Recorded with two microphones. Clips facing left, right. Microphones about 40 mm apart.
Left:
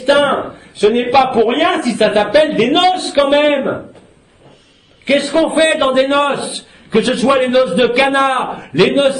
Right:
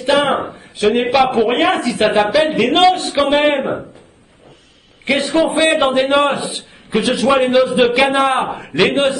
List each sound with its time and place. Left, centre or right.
0.0 s a man's voice: centre
5.0 s a man's voice: centre